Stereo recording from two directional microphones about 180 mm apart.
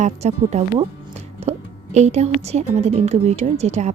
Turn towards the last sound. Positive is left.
turn(degrees=-40)  # may be behind; listen again after turning